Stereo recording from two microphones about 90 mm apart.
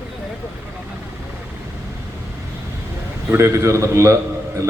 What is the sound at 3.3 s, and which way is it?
Speech, 30° right (ahead or behind).